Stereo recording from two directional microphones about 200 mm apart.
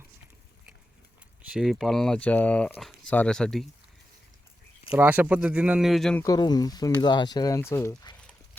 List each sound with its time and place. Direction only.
1.5 s speech: centre (ahead or behind)
4.9 s speech: 10° right (ahead or behind)
6.2 s speech: 20° left (ahead or behind)